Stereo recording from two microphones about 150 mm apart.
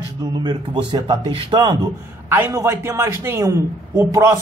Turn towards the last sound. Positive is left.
turn(degrees=-20)  # may be behind; listen again after turning